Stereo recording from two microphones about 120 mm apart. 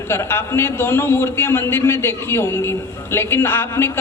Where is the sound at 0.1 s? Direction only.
20° left (ahead or behind).